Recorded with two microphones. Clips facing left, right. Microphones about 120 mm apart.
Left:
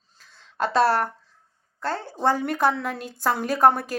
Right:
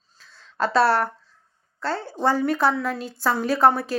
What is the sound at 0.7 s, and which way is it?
A woman's voice, 45° left (ahead or behind).